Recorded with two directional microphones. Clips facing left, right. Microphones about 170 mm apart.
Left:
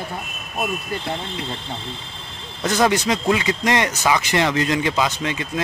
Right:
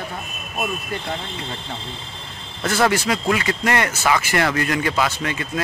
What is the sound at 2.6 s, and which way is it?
Speech, 15° left (ahead or behind).